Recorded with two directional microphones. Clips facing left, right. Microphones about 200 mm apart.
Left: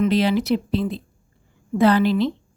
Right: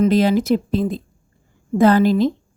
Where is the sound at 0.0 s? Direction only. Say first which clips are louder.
Right 4 dB; 45° right (ahead or behind).